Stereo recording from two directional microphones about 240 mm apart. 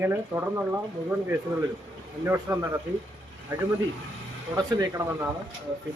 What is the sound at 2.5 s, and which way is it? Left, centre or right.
Speech, centre.